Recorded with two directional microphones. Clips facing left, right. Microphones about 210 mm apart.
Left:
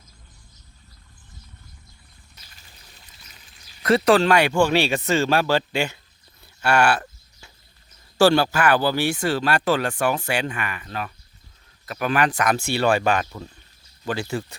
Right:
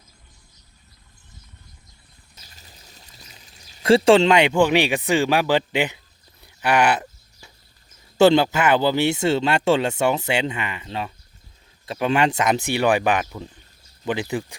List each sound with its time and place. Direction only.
2.5 s pour: 40° right (ahead or behind)
3.4 s a sound: 40° right (ahead or behind)
3.8 s speech: 30° right (ahead or behind)
8.2 s speech: 20° right (ahead or behind)